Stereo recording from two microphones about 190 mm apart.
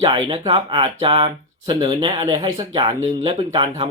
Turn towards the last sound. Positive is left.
turn(degrees=-25)  # may be behind; listen again after turning